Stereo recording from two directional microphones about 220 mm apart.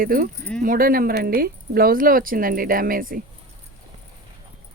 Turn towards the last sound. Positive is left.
turn(degrees=-40)  # may be behind; listen again after turning